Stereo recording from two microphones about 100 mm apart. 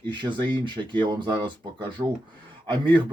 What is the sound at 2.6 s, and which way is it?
Speech, 50° right (ahead or behind).